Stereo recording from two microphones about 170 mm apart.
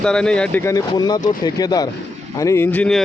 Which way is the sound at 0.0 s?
5° left (ahead or behind).